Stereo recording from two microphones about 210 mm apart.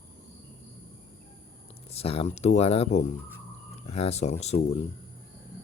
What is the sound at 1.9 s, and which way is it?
Speech, 30° left (ahead or behind).